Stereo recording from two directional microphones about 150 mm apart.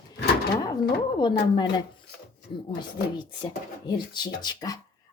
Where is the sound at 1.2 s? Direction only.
30° left (ahead or behind).